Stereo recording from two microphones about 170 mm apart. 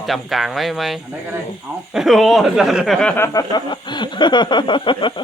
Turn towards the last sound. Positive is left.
turn(degrees=30)  # may be behind; listen again after turning